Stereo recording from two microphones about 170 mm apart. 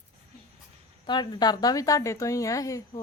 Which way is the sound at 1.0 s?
25° left (ahead or behind).